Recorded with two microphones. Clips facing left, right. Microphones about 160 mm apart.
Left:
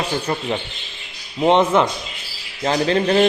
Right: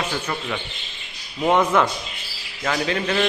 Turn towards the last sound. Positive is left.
turn(degrees=35)  # may be behind; listen again after turning